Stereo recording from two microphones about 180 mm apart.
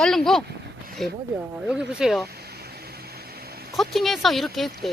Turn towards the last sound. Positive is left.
turn(degrees=0)  # may be behind; listen again after turning